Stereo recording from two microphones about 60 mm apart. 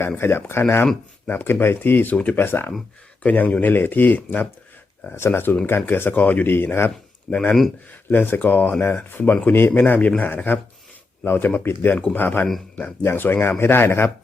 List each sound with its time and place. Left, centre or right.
0.2 s speech: left
3.2 s speech: left
6.5 s speech: left
7.3 s speech: left
8.1 s speech: left